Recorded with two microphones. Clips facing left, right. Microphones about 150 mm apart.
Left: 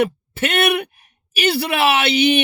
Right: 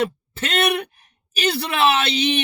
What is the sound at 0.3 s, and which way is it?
Speech, 60° left (ahead or behind).